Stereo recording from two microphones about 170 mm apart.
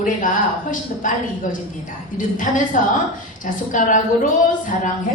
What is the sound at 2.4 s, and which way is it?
A woman's voice, 50° left (ahead or behind).